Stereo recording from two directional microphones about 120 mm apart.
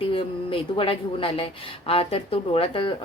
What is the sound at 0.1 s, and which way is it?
Speech, 50° left (ahead or behind).